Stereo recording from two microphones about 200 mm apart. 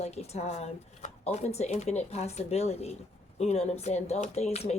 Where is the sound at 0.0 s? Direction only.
30° left (ahead or behind).